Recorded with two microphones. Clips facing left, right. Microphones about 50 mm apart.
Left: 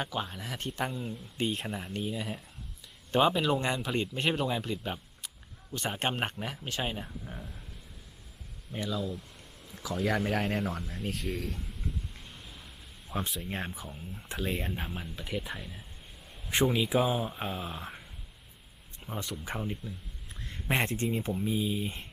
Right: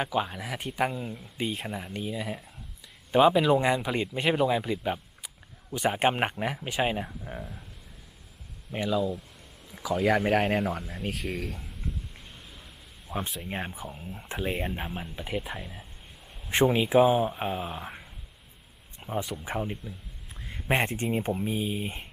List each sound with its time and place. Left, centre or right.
0.0 s speech: centre
8.8 s speech: centre
13.4 s speech: centre
16.6 s speech: right
19.0 s speech: centre
20.4 s a sound: centre
20.7 s speech: right